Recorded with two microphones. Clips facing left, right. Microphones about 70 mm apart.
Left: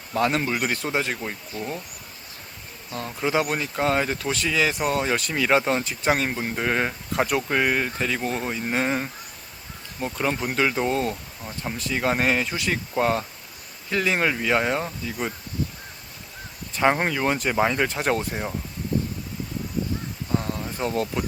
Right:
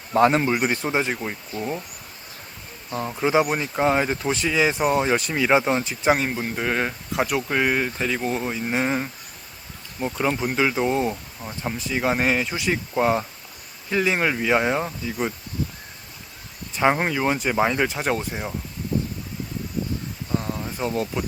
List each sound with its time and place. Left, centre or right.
0.1 s speech: right; by 1.8 s centre
2.9 s speech: centre
3.4 s speech: centre
16.7 s speech: centre
20.3 s a sound: centre